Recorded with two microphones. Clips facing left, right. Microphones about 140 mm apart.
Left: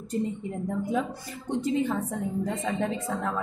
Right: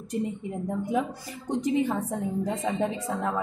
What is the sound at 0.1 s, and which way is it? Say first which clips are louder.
Speech: even; 15° right (ahead or behind).